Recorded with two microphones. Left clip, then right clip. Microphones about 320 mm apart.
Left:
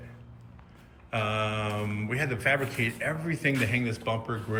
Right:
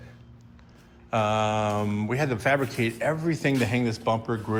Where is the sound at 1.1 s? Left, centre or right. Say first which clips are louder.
Right 5 dB; centre.